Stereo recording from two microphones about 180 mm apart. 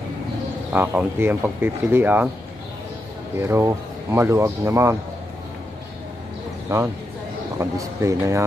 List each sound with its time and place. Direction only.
0.7 s speech: 10° right (ahead or behind)
3.3 s speech: 15° right (ahead or behind)
6.7 s speech: 15° right (ahead or behind)